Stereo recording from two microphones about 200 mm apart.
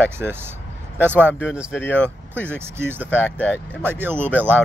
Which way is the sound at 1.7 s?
10° left (ahead or behind).